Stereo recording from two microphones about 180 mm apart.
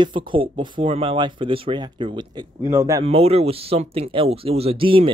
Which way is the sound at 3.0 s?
35° right (ahead or behind).